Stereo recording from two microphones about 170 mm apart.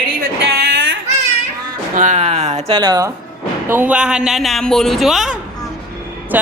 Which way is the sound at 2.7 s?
20° right (ahead or behind).